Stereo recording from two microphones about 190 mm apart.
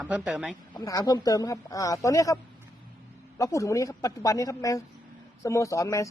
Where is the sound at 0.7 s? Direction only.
20° left (ahead or behind).